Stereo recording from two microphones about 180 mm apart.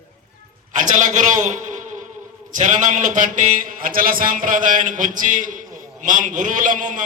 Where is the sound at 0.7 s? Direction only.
45° right (ahead or behind).